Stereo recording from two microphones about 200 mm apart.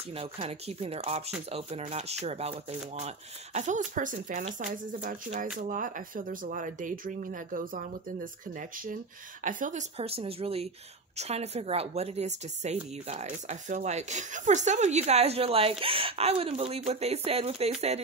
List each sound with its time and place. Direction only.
0.1 s speech: 30° right (ahead or behind)